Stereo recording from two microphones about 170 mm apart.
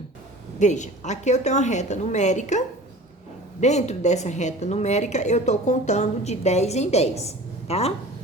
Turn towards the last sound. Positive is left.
turn(degrees=35)  # may be behind; listen again after turning